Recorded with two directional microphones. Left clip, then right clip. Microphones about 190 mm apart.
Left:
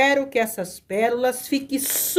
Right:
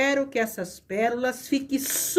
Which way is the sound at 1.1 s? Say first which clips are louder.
Left 4 dB; 40° left (ahead or behind).